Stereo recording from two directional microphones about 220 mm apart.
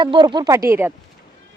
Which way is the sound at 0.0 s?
20° right (ahead or behind).